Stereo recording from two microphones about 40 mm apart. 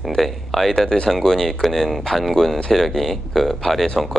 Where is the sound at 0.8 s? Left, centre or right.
Centre.